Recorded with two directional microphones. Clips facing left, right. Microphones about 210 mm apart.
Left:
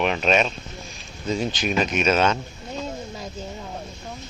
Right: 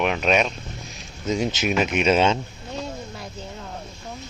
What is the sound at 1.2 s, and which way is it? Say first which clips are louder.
Speech: right 2 dB; 20° right (ahead or behind).